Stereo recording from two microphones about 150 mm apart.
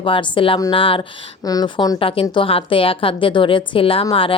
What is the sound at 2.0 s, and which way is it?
Speech, 35° left (ahead or behind).